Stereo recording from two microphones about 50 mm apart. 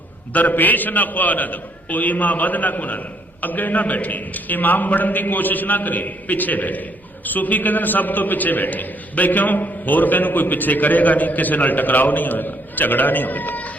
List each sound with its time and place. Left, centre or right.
0.3 s a man's voice: left